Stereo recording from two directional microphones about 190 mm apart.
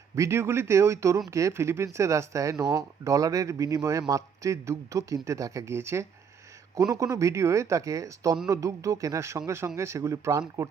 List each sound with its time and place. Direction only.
0.2 s speech: 15° right (ahead or behind)